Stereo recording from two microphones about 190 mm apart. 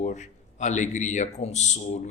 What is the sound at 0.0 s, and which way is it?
A man's voice, 40° left (ahead or behind).